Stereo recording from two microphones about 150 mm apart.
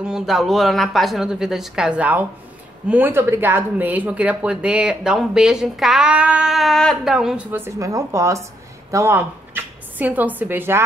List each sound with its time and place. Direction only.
0.0 s speech: 5° right (ahead or behind)
7.5 s a woman's voice: 20° right (ahead or behind)